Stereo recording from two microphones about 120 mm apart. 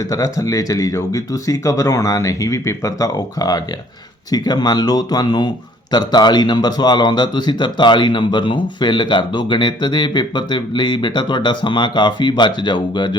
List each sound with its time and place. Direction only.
0.0 s a man's voice: 30° left (ahead or behind)